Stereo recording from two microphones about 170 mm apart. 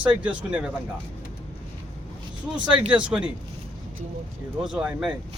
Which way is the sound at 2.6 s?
5° right (ahead or behind).